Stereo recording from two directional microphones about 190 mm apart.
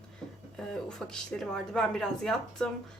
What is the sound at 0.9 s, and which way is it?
Speech, 5° left (ahead or behind).